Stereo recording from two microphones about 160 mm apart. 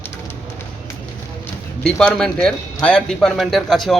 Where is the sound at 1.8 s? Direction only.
5° left (ahead or behind).